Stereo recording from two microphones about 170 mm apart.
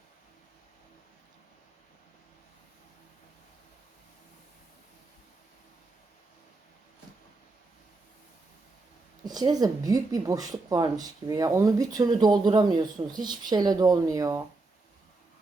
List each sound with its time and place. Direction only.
9.2 s speech: 25° right (ahead or behind)